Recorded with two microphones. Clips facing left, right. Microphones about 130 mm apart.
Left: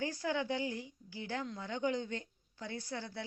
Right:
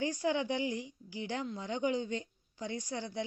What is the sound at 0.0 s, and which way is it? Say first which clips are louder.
Speech: right 4 dB; 15° right (ahead or behind).